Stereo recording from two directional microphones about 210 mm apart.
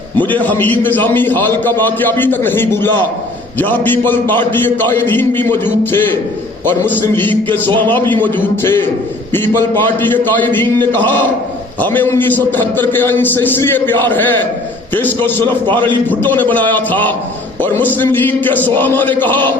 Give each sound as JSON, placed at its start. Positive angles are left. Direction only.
{"t": 0.2, "sound": "a man's voice", "side_deg": 10}